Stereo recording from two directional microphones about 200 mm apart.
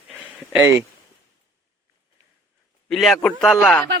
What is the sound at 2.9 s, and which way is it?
Speech, centre (ahead or behind).